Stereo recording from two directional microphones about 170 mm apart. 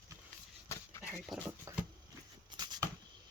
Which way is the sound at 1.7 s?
15° right (ahead or behind).